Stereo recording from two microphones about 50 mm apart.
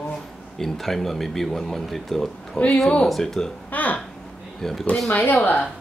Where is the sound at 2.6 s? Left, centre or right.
Left.